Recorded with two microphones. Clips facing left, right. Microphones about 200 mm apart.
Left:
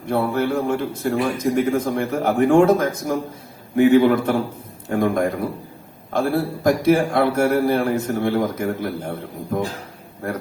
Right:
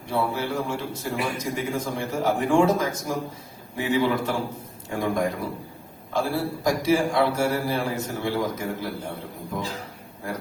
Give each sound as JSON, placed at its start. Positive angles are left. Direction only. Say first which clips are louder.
{"t": 0.0, "sound": "a man's voice", "louder": "left 6 dB", "side_deg": 55}